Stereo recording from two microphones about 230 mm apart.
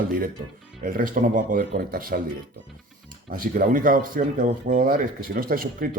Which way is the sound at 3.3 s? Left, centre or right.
Right.